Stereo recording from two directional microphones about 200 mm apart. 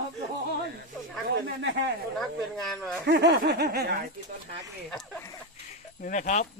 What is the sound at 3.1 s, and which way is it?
Snicker, 60° right (ahead or behind).